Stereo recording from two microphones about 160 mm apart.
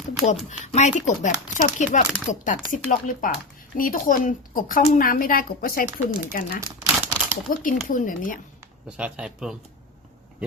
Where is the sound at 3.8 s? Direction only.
60° left (ahead or behind).